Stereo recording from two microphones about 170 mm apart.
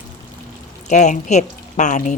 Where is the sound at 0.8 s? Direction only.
45° left (ahead or behind).